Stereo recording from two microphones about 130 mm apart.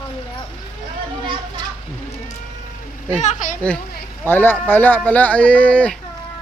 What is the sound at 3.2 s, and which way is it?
Speech, 70° left (ahead or behind).